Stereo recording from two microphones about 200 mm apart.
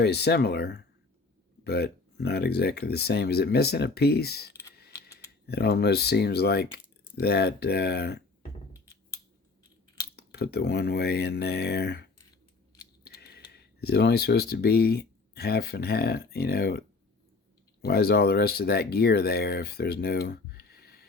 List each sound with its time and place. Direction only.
0.0 s speech: 55° left (ahead or behind)
10.2 s speech: 55° left (ahead or behind)
13.1 s speech: 55° left (ahead or behind)
17.8 s speech: 50° left (ahead or behind)